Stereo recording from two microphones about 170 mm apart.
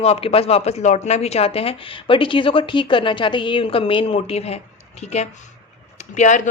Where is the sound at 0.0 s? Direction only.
35° left (ahead or behind).